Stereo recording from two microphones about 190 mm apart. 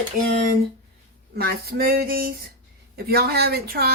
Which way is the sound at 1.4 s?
55° right (ahead or behind).